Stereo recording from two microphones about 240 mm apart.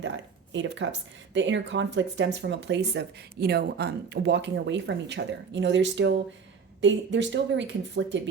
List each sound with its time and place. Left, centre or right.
0.5 s speech: right